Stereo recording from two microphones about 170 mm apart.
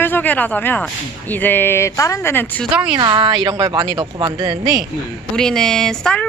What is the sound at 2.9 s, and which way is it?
A woman's voice, 30° right (ahead or behind).